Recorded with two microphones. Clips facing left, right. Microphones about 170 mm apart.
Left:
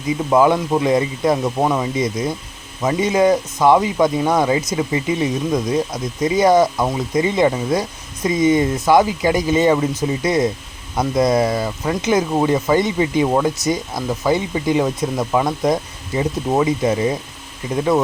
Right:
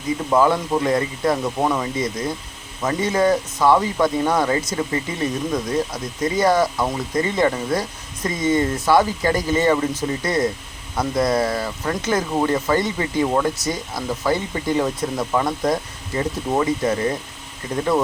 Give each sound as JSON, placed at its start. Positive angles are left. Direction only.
{"t": 0.3, "sound": "speech", "side_deg": 15}